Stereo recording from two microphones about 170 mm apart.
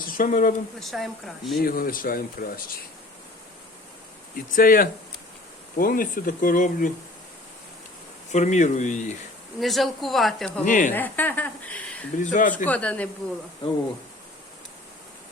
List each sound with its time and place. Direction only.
0.1 s speech: 50° left (ahead or behind)
0.8 s speech: centre (ahead or behind)
1.6 s speech: 60° left (ahead or behind)
4.5 s speech: 55° left (ahead or behind)
8.3 s speech: 45° left (ahead or behind)
9.6 s speech: centre (ahead or behind)
10.7 s speech: 50° left (ahead or behind)
10.9 s a woman's voice: 10° left (ahead or behind)
12.2 s speech: 50° left (ahead or behind)
12.6 s a woman's voice: 5° left (ahead or behind)
13.6 s speech: 30° left (ahead or behind)